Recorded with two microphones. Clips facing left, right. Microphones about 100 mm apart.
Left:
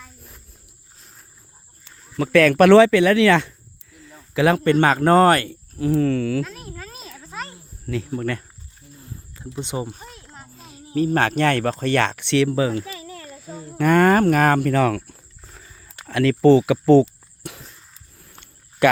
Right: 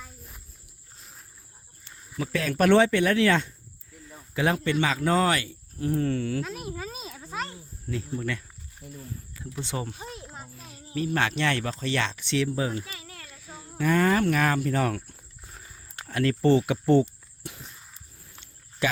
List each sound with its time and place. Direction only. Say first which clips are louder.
0.9 s wild animals: even; centre (ahead or behind)
2.1 s a man's voice: left 12 dB; 75° left (ahead or behind)
4.6 s speech: left 9 dB; 50° left (ahead or behind)
5.7 s speech: left 7 dB; 90° left
6.4 s insect: left 1 dB; 10° right (ahead or behind)
7.9 s speech: left 6 dB; 70° left (ahead or behind)
9.5 s speech: left 5 dB; 20° left (ahead or behind)
10.0 s a sound: right 2 dB; 15° right (ahead or behind)
10.6 s speech: left 9 dB; 35° left (ahead or behind); by 12.8 s 90° left
13.2 s a sound: left 9 dB; 45° left (ahead or behind)
13.7 s speech: left 7 dB; 60° left (ahead or behind)
14.7 s speech: left 7 dB; 90° left
18.8 s speech: left 11 dB; 60° left (ahead or behind)